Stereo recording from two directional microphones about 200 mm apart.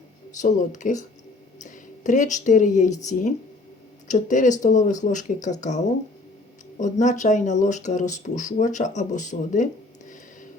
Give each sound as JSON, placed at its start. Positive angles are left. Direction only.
{"t": 0.3, "sound": "speech", "side_deg": 40}